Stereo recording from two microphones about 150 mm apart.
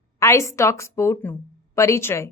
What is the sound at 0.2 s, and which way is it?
A woman's voice, 20° left (ahead or behind).